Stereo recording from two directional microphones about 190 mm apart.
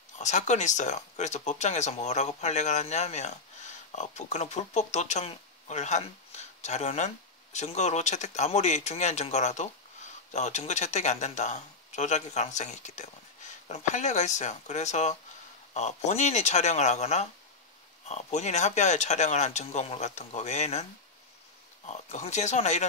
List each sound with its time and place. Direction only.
0.2 s speech: 40° left (ahead or behind)
21.8 s speech: 35° left (ahead or behind)